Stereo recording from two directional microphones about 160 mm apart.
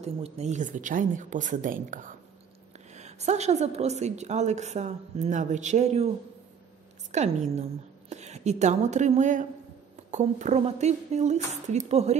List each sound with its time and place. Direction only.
0.0 s a woman's voice: 45° right (ahead or behind)
2.9 s a woman's voice: 45° right (ahead or behind)
7.1 s a woman's voice: 45° right (ahead or behind)